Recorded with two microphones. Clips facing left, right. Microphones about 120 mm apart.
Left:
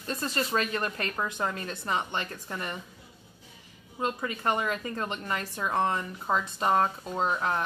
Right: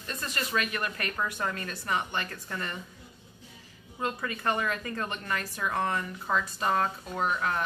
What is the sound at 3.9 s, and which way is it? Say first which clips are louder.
A woman's voice: left 2 dB; 20° left (ahead or behind).